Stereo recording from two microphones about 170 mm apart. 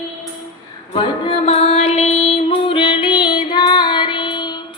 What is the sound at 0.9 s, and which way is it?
Music, 30° left (ahead or behind).